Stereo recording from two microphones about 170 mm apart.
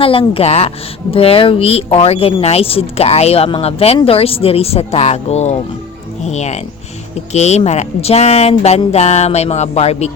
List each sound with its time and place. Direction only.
0.0 s speech: 35° left (ahead or behind)